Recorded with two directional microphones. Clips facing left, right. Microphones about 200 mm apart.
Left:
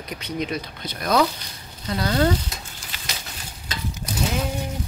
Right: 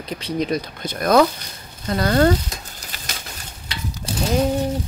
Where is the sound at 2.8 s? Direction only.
40° right (ahead or behind).